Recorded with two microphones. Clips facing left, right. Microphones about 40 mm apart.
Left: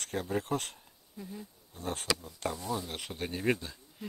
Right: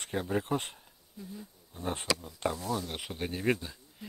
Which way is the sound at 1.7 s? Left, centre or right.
Right.